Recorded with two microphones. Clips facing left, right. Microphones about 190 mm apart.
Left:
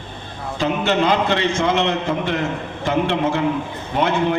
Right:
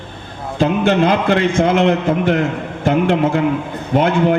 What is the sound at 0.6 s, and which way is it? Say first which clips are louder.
A man's voice: right 5 dB; 55° right (ahead or behind).